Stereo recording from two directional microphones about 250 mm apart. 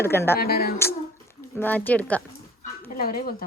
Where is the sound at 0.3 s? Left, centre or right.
Left.